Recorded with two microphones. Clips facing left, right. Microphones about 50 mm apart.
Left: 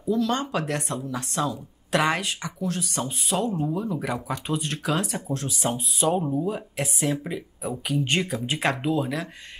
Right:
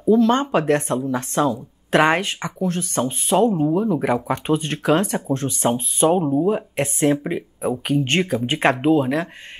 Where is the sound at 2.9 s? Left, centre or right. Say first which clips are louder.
Right 8 dB; right.